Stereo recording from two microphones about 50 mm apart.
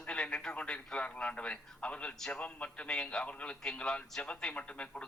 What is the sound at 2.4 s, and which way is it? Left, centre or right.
A woman's voice, left.